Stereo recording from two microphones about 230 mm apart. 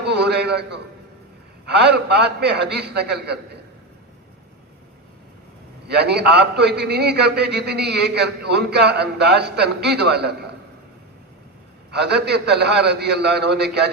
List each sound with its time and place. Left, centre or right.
0.1 s a sound: right
1.6 s a man's voice: right
5.9 s a man's voice: right
11.9 s a man's voice: right